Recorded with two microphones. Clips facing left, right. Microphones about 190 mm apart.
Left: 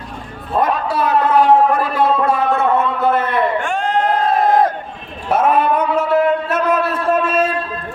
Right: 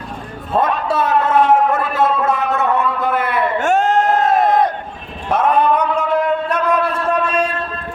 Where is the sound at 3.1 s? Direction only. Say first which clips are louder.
Left 2 dB; 10° right (ahead or behind).